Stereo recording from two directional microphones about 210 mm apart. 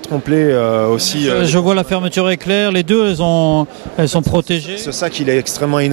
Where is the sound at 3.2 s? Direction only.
30° right (ahead or behind).